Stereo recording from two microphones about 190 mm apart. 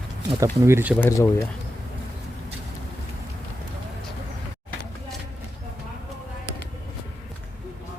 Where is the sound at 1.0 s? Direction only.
15° left (ahead or behind).